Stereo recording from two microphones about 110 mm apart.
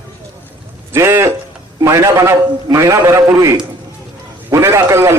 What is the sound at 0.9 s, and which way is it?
A man's voice, 25° right (ahead or behind).